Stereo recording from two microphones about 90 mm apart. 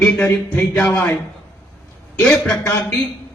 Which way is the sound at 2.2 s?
10° left (ahead or behind).